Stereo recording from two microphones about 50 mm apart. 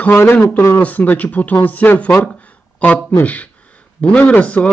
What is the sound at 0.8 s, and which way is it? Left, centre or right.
Speech, left.